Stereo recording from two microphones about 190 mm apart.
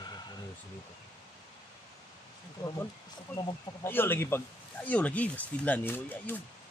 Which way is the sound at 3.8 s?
10° left (ahead or behind).